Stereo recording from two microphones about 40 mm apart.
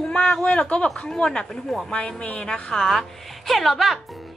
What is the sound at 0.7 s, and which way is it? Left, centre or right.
A woman's voice, left.